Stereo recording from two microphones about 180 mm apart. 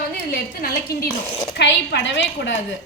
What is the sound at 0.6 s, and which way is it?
Speech, 55° left (ahead or behind).